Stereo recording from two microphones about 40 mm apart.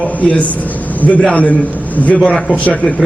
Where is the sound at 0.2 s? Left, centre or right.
Left.